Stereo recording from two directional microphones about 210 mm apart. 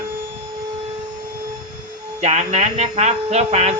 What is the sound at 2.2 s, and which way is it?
Speech, 30° right (ahead or behind).